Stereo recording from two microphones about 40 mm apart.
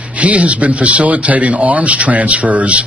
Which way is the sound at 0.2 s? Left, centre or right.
Right.